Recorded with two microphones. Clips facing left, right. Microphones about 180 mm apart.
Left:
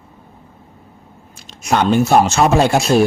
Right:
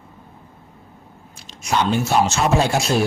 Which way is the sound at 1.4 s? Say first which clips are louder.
Left 5 dB; 55° left (ahead or behind).